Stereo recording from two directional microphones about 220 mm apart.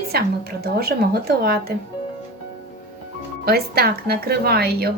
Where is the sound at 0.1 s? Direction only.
45° right (ahead or behind).